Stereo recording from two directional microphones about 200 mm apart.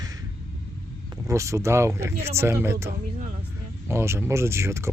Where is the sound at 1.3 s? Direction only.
15° right (ahead or behind).